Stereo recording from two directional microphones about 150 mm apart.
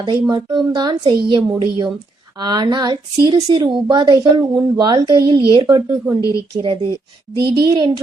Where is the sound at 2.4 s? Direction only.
30° right (ahead or behind).